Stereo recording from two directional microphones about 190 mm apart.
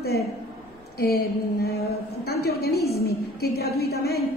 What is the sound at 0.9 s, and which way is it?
A woman's voice, 55° left (ahead or behind).